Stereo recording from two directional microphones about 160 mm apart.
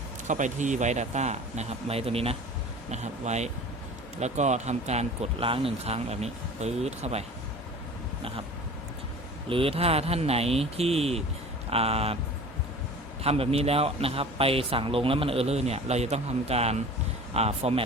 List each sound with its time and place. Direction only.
0.3 s speech: 50° right (ahead or behind)
9.5 s a man's voice: 35° right (ahead or behind)
13.2 s a man's voice: 40° right (ahead or behind)